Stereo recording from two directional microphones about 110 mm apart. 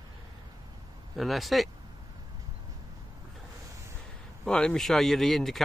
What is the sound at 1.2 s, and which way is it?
Speech, centre (ahead or behind).